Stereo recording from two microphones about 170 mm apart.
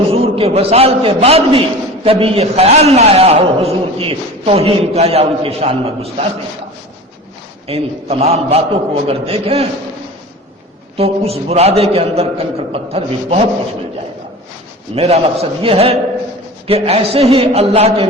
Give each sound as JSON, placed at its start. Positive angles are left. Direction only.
{"t": 0.1, "sound": "a man's voice", "side_deg": -35}
{"t": 7.7, "sound": "a man's voice", "side_deg": -35}
{"t": 10.9, "sound": "a man's voice", "side_deg": -35}
{"t": 14.9, "sound": "a man's voice", "side_deg": -35}